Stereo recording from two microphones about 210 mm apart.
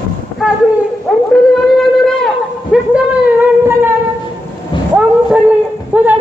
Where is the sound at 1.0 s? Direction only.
Centre (ahead or behind).